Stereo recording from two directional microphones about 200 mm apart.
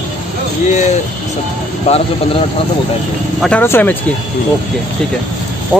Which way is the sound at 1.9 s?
30° left (ahead or behind).